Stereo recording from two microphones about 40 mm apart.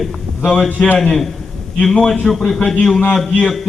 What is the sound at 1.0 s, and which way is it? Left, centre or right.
A man's voice, centre.